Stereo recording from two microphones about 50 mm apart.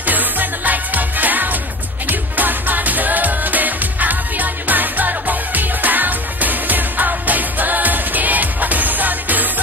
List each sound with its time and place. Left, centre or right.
0.0 s music: right